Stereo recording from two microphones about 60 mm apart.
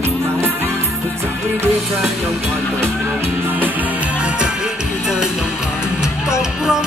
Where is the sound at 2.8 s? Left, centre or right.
Right.